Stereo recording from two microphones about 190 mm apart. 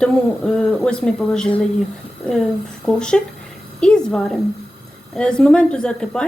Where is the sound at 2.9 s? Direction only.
5° left (ahead or behind).